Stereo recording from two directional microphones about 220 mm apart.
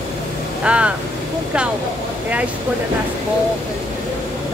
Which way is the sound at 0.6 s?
5° right (ahead or behind).